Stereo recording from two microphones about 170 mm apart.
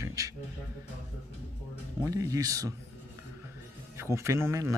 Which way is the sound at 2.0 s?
20° right (ahead or behind).